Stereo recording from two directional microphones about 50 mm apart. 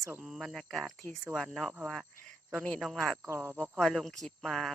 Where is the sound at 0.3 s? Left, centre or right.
Centre.